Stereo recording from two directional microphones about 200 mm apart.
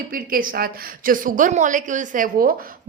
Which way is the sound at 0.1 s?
45° right (ahead or behind).